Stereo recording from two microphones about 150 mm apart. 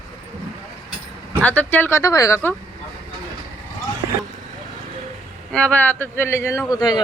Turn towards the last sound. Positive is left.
turn(degrees=30)  # may be behind; listen again after turning